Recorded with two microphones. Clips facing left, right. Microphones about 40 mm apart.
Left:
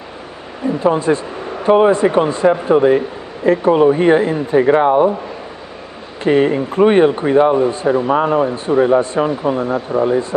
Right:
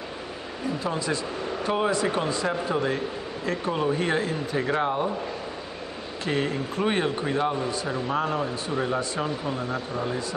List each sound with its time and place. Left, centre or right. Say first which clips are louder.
0.7 s speech: left 13 dB; left
6.2 s speech: left 14 dB; left